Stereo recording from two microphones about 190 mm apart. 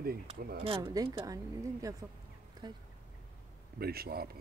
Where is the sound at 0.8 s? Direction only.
20° right (ahead or behind).